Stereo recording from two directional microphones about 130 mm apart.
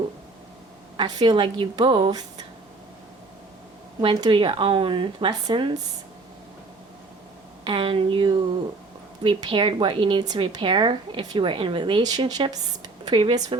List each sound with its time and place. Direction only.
0.9 s speech: 35° right (ahead or behind)
4.0 s speech: 40° right (ahead or behind)
7.6 s speech: 40° right (ahead or behind)